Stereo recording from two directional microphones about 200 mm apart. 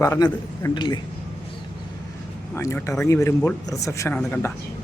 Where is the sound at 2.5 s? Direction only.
15° left (ahead or behind).